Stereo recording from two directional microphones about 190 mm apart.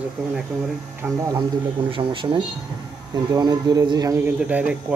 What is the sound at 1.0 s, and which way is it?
A man's voice, 15° right (ahead or behind).